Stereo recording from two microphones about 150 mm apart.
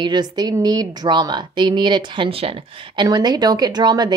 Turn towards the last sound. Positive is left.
turn(degrees=-25)  # may be behind; listen again after turning